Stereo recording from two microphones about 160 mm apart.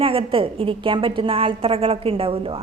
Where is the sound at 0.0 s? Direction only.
35° right (ahead or behind).